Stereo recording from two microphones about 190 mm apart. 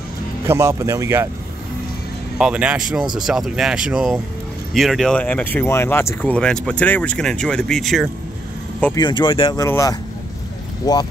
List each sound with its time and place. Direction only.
0.5 s speech: 15° right (ahead or behind)
2.3 s speech: 5° right (ahead or behind)
8.9 s speech: 25° left (ahead or behind)